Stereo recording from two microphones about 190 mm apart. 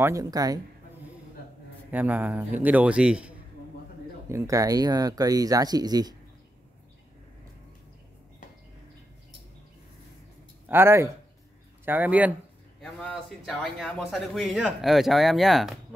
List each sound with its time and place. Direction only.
0.0 s speech: 15° right (ahead or behind)
1.9 s a man's voice: 10° right (ahead or behind)
10.7 s a man's voice: 15° right (ahead or behind)